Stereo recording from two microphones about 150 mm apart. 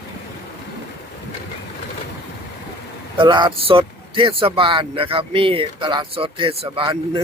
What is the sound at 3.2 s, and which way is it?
Speech, 30° right (ahead or behind).